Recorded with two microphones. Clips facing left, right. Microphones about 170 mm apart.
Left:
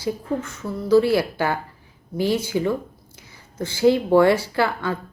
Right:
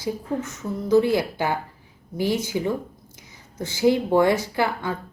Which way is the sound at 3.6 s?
15° right (ahead or behind).